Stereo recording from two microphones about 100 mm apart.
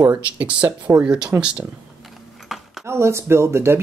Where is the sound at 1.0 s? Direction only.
10° right (ahead or behind).